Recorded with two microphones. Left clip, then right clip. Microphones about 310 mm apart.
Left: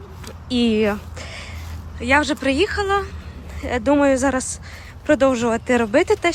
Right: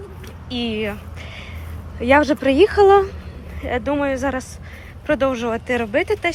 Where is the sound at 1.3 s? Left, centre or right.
Centre.